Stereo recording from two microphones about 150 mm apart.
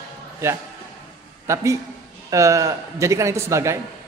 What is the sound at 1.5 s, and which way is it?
A man's voice, 20° right (ahead or behind).